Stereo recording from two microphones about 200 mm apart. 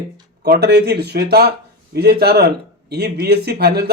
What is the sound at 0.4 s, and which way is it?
A man's voice, 55° right (ahead or behind).